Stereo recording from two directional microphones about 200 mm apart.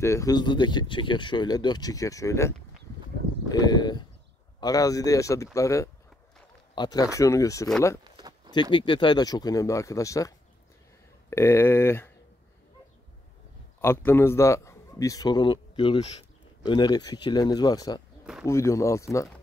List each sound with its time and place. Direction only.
0.0 s speech: 15° left (ahead or behind)
8.0 s a sound: 20° right (ahead or behind)
8.7 s speech: 25° left (ahead or behind)
13.7 s a man's voice: 10° left (ahead or behind)